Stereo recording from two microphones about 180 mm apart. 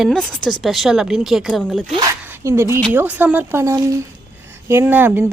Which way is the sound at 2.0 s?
15° right (ahead or behind).